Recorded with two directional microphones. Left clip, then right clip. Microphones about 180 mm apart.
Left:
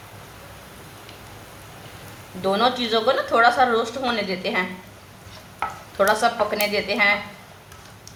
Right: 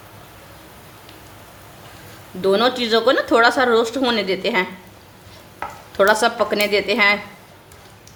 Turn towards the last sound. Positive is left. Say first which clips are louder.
# right 4 dB
turn(degrees=-60)  # may be behind; listen again after turning